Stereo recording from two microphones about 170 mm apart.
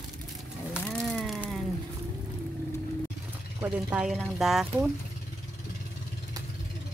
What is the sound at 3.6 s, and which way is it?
Speech, 5° right (ahead or behind).